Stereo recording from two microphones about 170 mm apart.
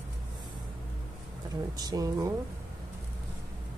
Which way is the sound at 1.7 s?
20° right (ahead or behind).